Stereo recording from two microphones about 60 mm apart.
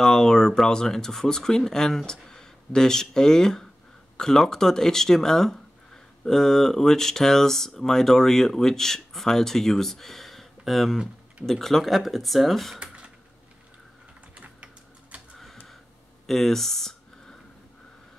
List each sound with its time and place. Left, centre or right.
0.0 s speech: centre
12.7 s computer keyboard: centre
14.3 s typing: right
16.3 s a sound: centre